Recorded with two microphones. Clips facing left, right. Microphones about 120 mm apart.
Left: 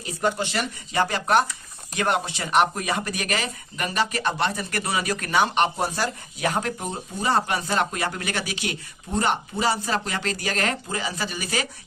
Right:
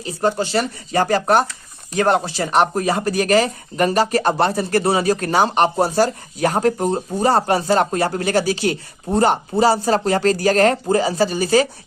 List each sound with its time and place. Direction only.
0.0 s speech: 30° right (ahead or behind)